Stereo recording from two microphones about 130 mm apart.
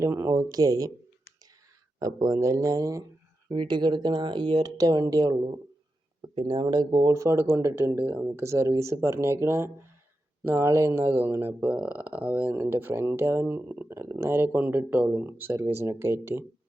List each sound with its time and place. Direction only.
0.0 s speech: 20° right (ahead or behind)
2.2 s speech: 25° right (ahead or behind)
7.0 s speech: 25° right (ahead or behind)